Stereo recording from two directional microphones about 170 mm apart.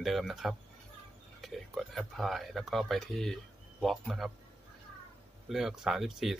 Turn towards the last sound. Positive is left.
turn(degrees=0)  # may be behind; listen again after turning